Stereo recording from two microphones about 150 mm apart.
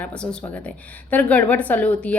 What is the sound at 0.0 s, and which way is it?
A woman's voice, 10° left (ahead or behind).